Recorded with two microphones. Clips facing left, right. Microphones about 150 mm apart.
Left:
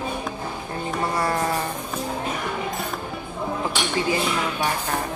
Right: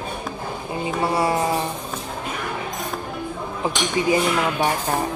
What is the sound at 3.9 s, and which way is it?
Music, 20° right (ahead or behind).